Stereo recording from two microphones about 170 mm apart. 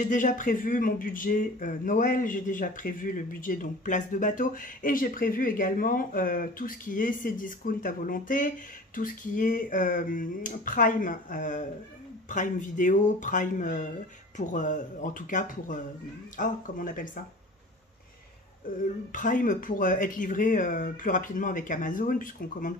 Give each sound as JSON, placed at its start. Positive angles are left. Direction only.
{"t": 0.0, "sound": "speech", "side_deg": 50}
{"t": 19.1, "sound": "speech", "side_deg": 50}